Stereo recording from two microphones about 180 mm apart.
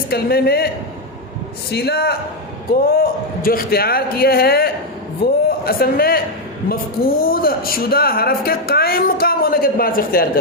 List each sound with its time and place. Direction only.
0.1 s speech: 60° left (ahead or behind)
1.7 s a man's voice: 60° left (ahead or behind)